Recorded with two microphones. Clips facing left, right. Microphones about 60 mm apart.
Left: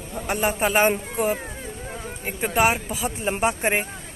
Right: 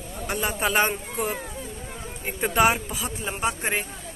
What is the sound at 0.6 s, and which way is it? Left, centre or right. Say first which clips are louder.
Speech: left 3 dB; centre.